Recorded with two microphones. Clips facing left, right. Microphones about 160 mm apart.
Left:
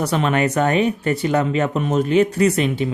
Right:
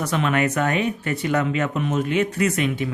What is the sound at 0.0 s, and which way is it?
Speech, 35° left (ahead or behind).